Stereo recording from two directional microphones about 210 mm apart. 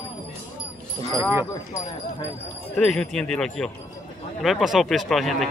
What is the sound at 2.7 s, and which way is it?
Speech, 5° left (ahead or behind).